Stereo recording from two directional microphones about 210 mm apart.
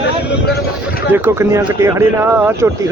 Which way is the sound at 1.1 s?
10° right (ahead or behind).